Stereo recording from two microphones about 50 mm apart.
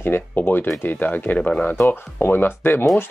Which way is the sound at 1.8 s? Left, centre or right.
Left.